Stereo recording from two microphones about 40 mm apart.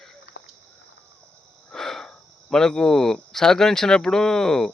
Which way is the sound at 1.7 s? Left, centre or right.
Centre.